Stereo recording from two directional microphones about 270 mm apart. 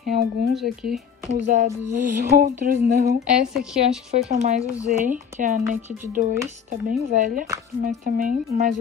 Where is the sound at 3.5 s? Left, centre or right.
Centre.